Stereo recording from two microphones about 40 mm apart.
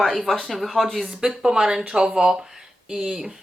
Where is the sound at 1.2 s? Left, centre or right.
Centre.